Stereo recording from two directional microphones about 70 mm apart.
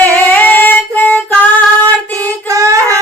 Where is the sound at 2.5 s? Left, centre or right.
Right.